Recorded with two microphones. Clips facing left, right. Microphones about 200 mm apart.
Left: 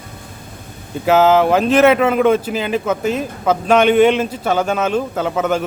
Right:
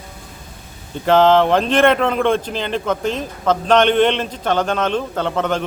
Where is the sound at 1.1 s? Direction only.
5° left (ahead or behind).